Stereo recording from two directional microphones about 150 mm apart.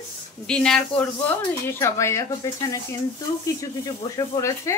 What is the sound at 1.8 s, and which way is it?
Speech, 20° left (ahead or behind).